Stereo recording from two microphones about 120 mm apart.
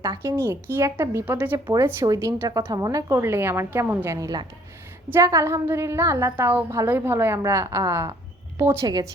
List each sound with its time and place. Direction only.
0.2 s a woman's voice: 20° right (ahead or behind)